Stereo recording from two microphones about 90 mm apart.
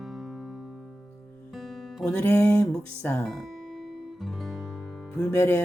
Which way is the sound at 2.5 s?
15° left (ahead or behind).